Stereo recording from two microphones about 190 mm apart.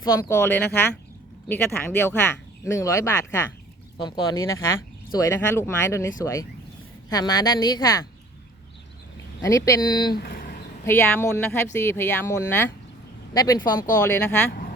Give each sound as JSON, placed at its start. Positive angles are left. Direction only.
{"t": 0.0, "sound": "speech", "side_deg": 15}
{"t": 9.4, "sound": "speech", "side_deg": 15}
{"t": 10.2, "sound": "a sound", "side_deg": 50}
{"t": 10.8, "sound": "speech", "side_deg": 10}
{"t": 14.1, "sound": "speech", "side_deg": 5}